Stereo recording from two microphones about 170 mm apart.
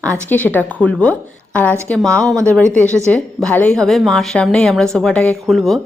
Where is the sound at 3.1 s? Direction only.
10° left (ahead or behind).